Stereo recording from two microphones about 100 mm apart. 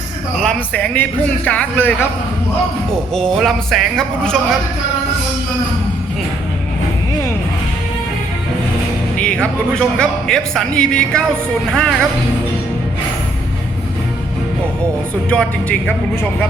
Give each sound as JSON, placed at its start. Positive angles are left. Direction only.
{"t": 0.4, "sound": "speech", "side_deg": 15}
{"t": 3.2, "sound": "speech", "side_deg": 5}
{"t": 9.1, "sound": "speech", "side_deg": 10}
{"t": 15.3, "sound": "speech", "side_deg": 10}